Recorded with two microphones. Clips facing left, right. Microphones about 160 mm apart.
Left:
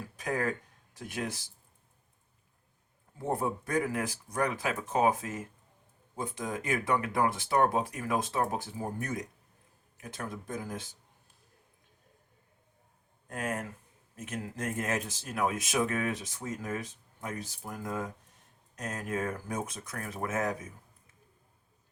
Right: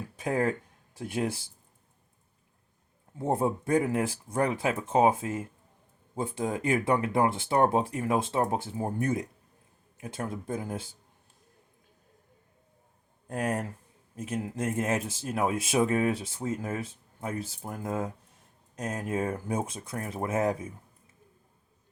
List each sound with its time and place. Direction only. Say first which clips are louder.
0.2 s speech: right 4 dB; 25° right (ahead or behind)
3.2 s speech: right 4 dB; 25° right (ahead or behind)
13.2 s speech: right 5 dB; 35° right (ahead or behind)
19.0 s speech: right 3 dB; 30° right (ahead or behind)